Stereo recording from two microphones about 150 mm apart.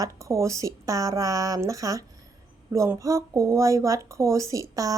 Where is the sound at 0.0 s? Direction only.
20° right (ahead or behind).